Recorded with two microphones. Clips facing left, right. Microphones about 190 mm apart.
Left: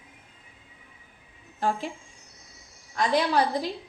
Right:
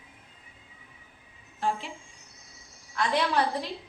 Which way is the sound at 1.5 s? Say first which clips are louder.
Left 3 dB; 40° left (ahead or behind).